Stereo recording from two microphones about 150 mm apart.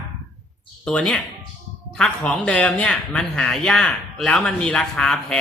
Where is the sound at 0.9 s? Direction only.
5° left (ahead or behind).